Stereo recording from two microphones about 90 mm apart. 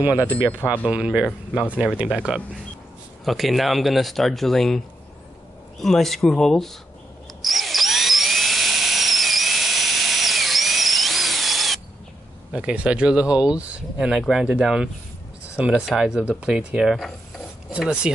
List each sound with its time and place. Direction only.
0.0 s speech: 20° right (ahead or behind); by 6.7 s 5° left (ahead or behind)
7.4 s drill: centre (ahead or behind)
12.5 s speech: 15° right (ahead or behind)